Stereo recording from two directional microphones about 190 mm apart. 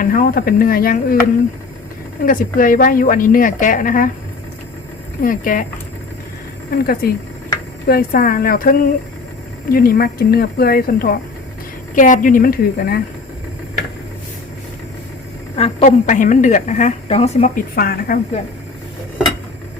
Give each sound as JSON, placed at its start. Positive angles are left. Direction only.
{"t": 0.0, "sound": "a woman's voice", "side_deg": 50}
{"t": 2.2, "sound": "a woman's voice", "side_deg": 45}
{"t": 5.2, "sound": "a woman's voice", "side_deg": 45}
{"t": 6.7, "sound": "a woman's voice", "side_deg": 50}
{"t": 15.5, "sound": "a woman's voice", "side_deg": 35}
{"t": 17.7, "sound": "a woman's voice", "side_deg": 55}